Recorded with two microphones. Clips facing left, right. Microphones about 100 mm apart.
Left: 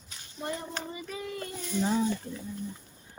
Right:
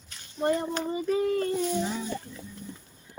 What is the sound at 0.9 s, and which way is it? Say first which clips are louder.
Speech: right 12 dB; 40° right (ahead or behind).